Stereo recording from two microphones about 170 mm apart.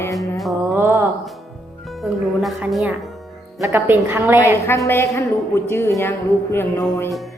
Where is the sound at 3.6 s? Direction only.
10° right (ahead or behind).